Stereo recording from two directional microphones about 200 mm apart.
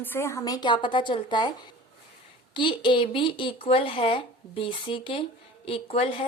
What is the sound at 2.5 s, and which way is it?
Speech, 25° left (ahead or behind).